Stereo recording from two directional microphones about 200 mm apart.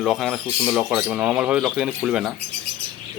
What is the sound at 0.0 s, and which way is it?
Speech, centre (ahead or behind).